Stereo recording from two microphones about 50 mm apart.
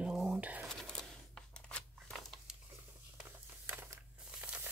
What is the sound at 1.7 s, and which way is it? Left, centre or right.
Scissors, left.